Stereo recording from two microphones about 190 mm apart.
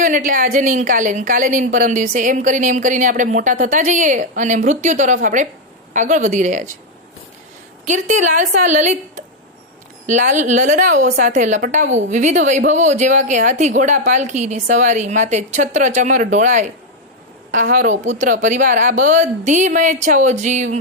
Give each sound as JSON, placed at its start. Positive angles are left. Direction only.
{"t": 0.0, "sound": "a woman's voice", "side_deg": -45}
{"t": 7.9, "sound": "a woman's voice", "side_deg": -40}
{"t": 10.1, "sound": "a woman's voice", "side_deg": -40}